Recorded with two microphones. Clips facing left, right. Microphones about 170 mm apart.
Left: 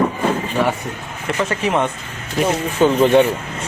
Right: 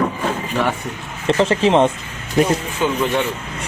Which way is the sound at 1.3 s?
30° right (ahead or behind).